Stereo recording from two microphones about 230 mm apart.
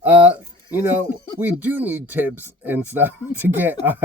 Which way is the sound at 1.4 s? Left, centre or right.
Centre.